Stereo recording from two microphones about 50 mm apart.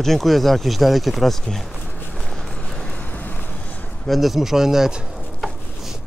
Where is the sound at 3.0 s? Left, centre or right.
Left.